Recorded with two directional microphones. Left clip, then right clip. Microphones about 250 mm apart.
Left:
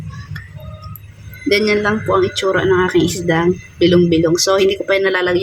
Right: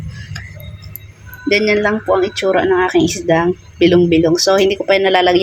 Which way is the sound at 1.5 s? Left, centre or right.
Centre.